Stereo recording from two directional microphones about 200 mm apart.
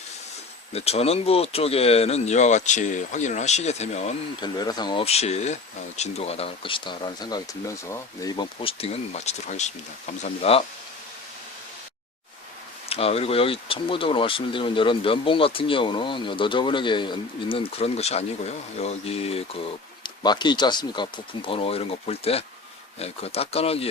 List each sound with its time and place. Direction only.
0.7 s speech: 30° left (ahead or behind)
4.4 s speech: 20° left (ahead or behind)
12.9 s speech: 30° left (ahead or behind)